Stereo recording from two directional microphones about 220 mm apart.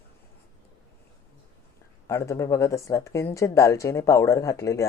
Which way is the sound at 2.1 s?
15° left (ahead or behind).